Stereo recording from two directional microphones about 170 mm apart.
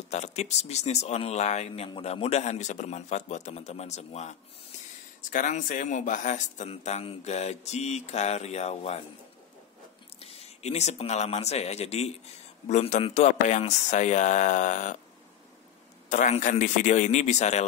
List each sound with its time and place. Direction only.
0.1 s speech: 40° left (ahead or behind)
10.1 s speech: 35° left (ahead or behind)
16.1 s speech: 45° left (ahead or behind)